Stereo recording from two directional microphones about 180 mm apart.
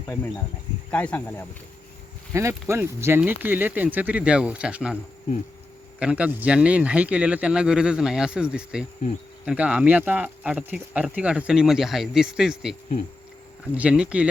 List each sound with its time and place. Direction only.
0.9 s speech: 10° left (ahead or behind)
2.3 s speech: 15° right (ahead or behind)
6.0 s speech: 5° right (ahead or behind)
13.7 s speech: 5° right (ahead or behind)